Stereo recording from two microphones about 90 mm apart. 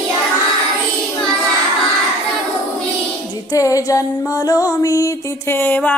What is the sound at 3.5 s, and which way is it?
Music, 40° left (ahead or behind).